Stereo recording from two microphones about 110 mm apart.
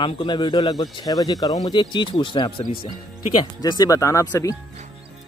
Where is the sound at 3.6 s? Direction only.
35° left (ahead or behind).